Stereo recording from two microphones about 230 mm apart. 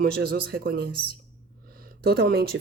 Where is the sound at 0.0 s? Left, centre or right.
Right.